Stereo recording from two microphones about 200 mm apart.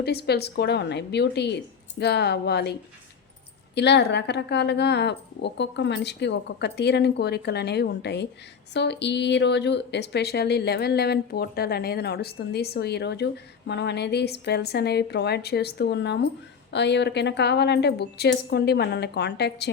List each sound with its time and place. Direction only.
0.0 s speech: 55° left (ahead or behind)
3.8 s speech: 60° left (ahead or behind)